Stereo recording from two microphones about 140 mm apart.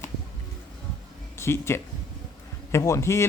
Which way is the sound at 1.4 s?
20° left (ahead or behind).